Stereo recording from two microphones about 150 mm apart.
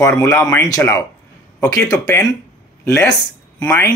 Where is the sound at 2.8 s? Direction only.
15° left (ahead or behind).